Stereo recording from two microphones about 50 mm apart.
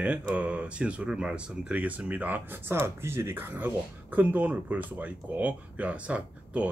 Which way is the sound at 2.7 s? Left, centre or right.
Right.